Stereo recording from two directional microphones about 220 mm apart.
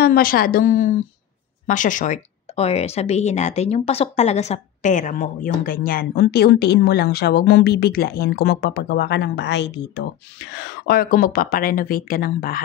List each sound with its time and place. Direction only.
0.0 s speech: 40° left (ahead or behind)